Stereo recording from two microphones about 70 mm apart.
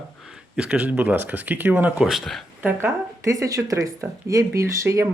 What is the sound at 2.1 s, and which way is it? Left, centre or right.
Speech, centre.